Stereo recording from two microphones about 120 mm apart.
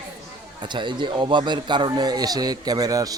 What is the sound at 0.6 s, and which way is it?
Speech, 40° right (ahead or behind).